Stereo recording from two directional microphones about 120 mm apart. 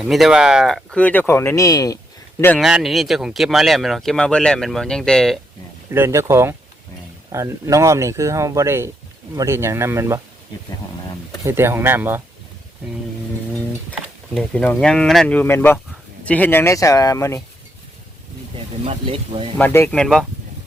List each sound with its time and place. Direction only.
0.0 s speech: centre (ahead or behind); by 2.0 s 30° left (ahead or behind)
2.6 s speech: 5° right (ahead or behind)
5.9 s speech: 20° right (ahead or behind)
11.4 s speech: 20° right (ahead or behind)
14.8 s speech: 5° left (ahead or behind); by 17.4 s 25° left (ahead or behind)
18.5 s speech: 50° right (ahead or behind)
19.5 s speech: 15° left (ahead or behind)
20.0 s speech: centre (ahead or behind)